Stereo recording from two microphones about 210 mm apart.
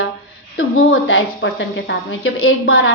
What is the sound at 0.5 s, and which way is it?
A woman's voice, 70° left (ahead or behind).